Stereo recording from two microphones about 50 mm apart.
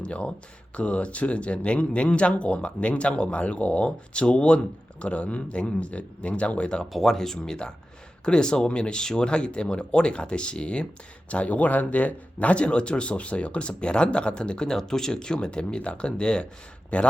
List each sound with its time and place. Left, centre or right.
0.0 s speech: left
6.9 s speech: centre; by 17.1 s left